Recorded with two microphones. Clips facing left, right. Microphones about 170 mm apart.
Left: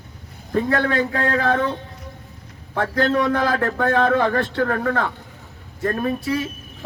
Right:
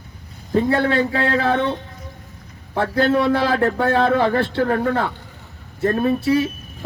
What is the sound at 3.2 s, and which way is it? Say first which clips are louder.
Speech: right 2 dB; 30° right (ahead or behind).